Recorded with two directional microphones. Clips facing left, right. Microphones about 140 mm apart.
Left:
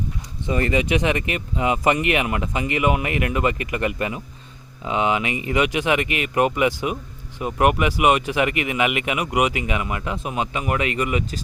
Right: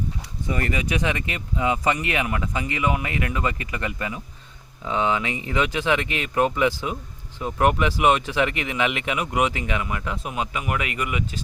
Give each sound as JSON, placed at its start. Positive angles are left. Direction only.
{"t": 0.4, "sound": "speech", "side_deg": 25}